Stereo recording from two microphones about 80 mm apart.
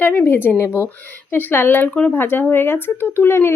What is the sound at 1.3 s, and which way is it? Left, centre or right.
Speech, left.